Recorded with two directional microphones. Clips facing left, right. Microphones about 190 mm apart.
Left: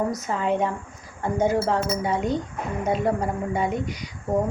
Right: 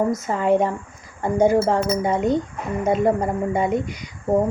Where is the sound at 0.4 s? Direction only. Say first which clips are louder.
Right 6 dB; 10° right (ahead or behind).